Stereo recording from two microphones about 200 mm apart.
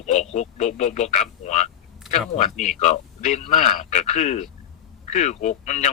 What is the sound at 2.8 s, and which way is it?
A man's voice, 35° left (ahead or behind).